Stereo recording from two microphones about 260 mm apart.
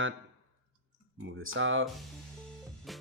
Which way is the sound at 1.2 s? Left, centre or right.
Right.